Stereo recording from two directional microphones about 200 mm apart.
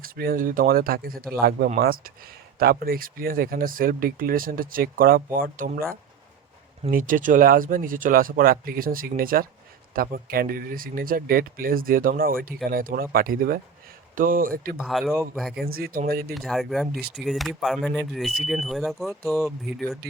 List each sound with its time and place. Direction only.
0.0 s speech: 45° right (ahead or behind)
6.9 s speech: 40° right (ahead or behind)
14.8 s speech: centre (ahead or behind)
15.6 s speech: 50° right (ahead or behind)
16.3 s speech: centre (ahead or behind)